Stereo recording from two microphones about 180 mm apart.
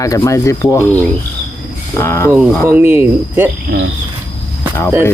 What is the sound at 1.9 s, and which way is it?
Speech, 15° left (ahead or behind).